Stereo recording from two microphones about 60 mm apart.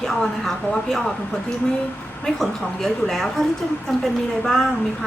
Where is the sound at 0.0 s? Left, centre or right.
Centre.